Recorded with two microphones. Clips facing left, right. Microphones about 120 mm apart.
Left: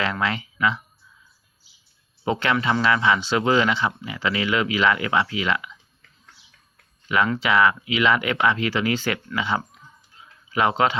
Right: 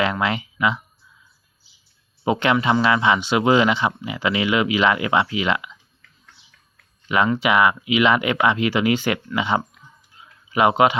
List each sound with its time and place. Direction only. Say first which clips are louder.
0.0 s speech: right 3 dB; 20° right (ahead or behind)
2.2 s speech: right 3 dB; 15° right (ahead or behind)
7.3 s speech: right 2 dB; 15° right (ahead or behind)